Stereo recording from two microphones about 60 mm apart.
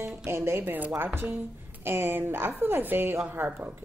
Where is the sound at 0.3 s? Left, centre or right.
Right.